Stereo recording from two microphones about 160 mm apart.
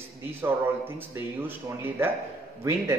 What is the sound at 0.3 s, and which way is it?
A man's voice, 15° right (ahead or behind).